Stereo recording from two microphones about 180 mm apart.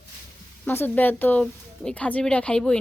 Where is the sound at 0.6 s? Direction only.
10° left (ahead or behind).